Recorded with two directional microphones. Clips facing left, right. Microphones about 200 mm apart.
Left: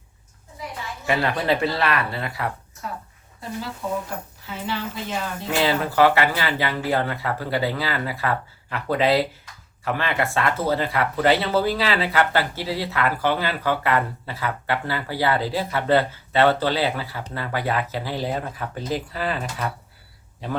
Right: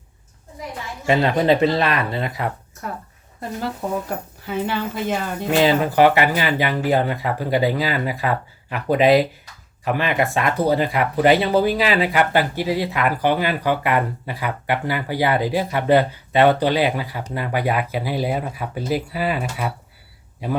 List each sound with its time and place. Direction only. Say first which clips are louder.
1.0 s speech: right 6 dB; 20° right (ahead or behind)
4.4 s a woman's voice: right 6 dB; 55° right (ahead or behind)
5.5 s speech: right 6 dB; 20° right (ahead or behind)